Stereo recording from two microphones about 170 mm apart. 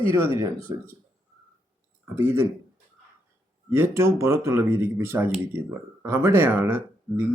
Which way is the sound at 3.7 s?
15° right (ahead or behind).